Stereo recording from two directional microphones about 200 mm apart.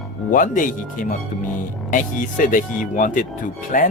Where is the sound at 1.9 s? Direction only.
40° left (ahead or behind).